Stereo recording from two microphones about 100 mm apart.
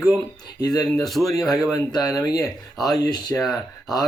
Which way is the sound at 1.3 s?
35° left (ahead or behind).